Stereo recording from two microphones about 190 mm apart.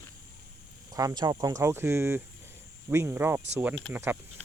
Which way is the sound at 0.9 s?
20° right (ahead or behind).